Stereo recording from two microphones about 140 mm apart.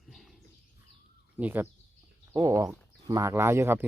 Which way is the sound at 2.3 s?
25° right (ahead or behind).